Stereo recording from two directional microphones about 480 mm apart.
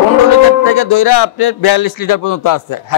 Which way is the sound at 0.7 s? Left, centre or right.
Left.